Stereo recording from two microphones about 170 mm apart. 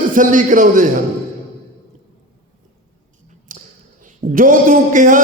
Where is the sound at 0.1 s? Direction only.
50° right (ahead or behind).